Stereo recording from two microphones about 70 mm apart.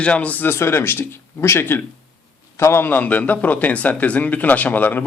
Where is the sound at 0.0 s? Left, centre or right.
Centre.